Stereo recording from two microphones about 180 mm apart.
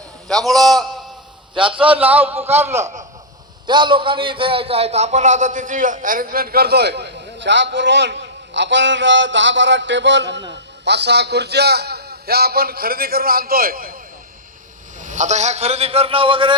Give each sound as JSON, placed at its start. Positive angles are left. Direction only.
{"t": 0.3, "sound": "a man's voice", "side_deg": 0}
{"t": 1.5, "sound": "a man's voice", "side_deg": -30}
{"t": 1.9, "sound": "a man's voice", "side_deg": -10}
{"t": 3.7, "sound": "a man's voice", "side_deg": -25}
{"t": 14.9, "sound": "a man's voice", "side_deg": -45}